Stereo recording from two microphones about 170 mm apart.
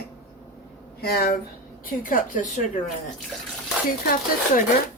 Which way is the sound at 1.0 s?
65° left (ahead or behind).